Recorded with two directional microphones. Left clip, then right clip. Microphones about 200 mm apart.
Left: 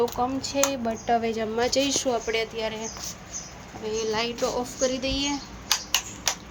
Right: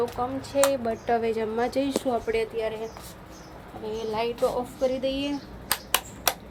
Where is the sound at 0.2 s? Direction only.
20° left (ahead or behind).